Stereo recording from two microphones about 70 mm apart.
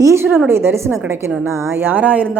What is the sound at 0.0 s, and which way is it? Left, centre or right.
A woman's voice, right.